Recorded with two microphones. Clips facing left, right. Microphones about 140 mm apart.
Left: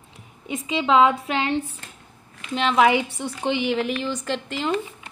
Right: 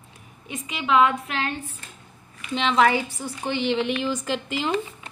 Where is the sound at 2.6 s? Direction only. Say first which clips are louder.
Left 1 dB; 5° left (ahead or behind).